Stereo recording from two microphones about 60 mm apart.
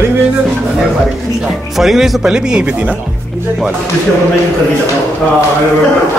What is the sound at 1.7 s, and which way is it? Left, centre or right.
Speech, centre.